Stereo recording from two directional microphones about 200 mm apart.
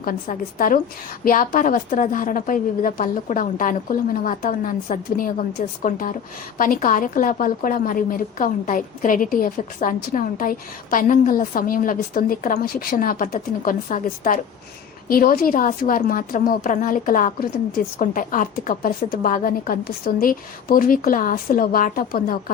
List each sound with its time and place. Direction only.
0.0 s a woman's voice: 45° left (ahead or behind)